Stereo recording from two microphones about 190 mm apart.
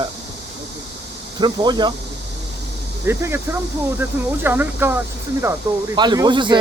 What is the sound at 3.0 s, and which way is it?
Speech, 10° right (ahead or behind).